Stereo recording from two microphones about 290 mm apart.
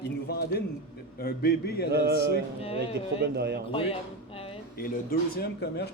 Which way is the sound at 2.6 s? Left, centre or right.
Centre.